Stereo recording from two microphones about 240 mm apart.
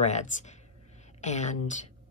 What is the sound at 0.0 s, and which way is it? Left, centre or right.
Speech, left.